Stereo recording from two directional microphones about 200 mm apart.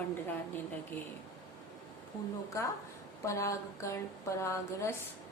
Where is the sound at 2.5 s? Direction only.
15° left (ahead or behind).